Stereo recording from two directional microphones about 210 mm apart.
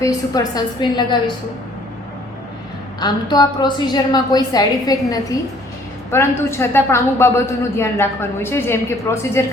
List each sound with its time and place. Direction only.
0.0 s a woman's voice: 15° left (ahead or behind)
3.0 s a woman's voice: 20° left (ahead or behind)